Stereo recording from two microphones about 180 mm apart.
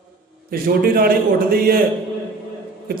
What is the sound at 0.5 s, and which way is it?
A man's voice, 55° right (ahead or behind).